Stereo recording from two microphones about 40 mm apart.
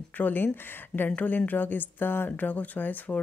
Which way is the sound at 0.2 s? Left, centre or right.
Left.